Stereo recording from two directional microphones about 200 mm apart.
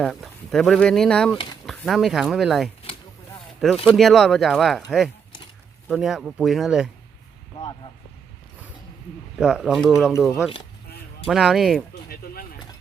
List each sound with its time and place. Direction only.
0.0 s speech: centre (ahead or behind)
3.8 s speech: centre (ahead or behind)
9.4 s speech: centre (ahead or behind)
11.3 s speech: centre (ahead or behind)
12.0 s speech: 50° left (ahead or behind)